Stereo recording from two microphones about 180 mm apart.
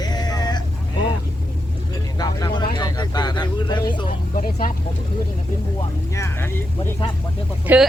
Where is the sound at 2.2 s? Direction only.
25° left (ahead or behind).